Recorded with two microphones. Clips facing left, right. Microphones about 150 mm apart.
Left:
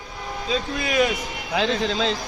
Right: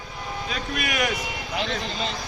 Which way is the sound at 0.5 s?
25° left (ahead or behind).